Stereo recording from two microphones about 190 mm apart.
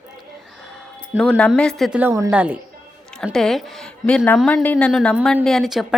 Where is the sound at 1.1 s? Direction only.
Centre (ahead or behind).